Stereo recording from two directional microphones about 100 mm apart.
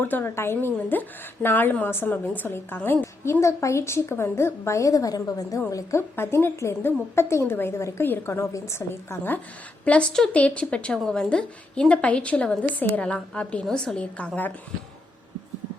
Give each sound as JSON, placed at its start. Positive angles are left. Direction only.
{"t": 0.0, "sound": "a woman's voice", "side_deg": 20}
{"t": 9.8, "sound": "a woman's voice", "side_deg": 10}